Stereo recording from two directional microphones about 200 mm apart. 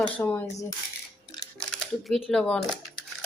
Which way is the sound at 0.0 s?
10° left (ahead or behind).